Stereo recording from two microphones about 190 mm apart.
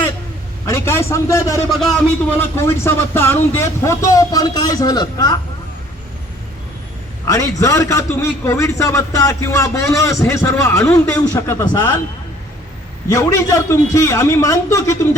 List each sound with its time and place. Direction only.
0.6 s a man's voice: 15° left (ahead or behind)
7.3 s a man's voice: 15° left (ahead or behind)
13.1 s a man's voice: 15° left (ahead or behind)